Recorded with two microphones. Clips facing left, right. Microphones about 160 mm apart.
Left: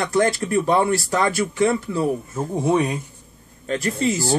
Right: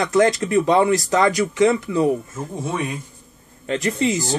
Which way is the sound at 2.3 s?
30° left (ahead or behind).